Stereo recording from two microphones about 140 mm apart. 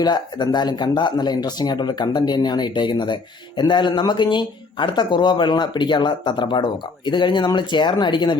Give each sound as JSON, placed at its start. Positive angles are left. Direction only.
{"t": 0.0, "sound": "speech", "side_deg": 30}